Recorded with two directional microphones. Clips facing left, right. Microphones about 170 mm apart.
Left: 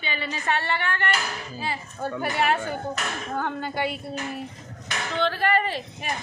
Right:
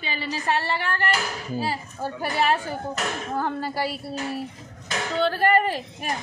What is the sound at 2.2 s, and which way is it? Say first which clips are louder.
A woman's voice: right 1 dB; 30° right (ahead or behind).